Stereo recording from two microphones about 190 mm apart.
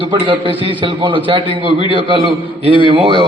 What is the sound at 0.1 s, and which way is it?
A man's voice, 25° right (ahead or behind).